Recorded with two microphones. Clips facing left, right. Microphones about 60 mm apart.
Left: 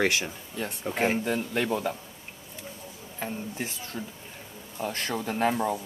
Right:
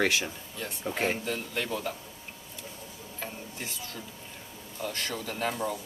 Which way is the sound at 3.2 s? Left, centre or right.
Left.